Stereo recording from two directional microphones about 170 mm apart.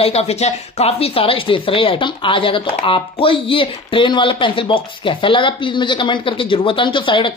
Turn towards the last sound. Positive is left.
turn(degrees=30)  # may be behind; listen again after turning